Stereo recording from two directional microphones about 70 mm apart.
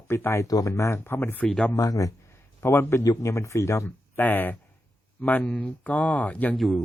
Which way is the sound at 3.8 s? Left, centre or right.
Left.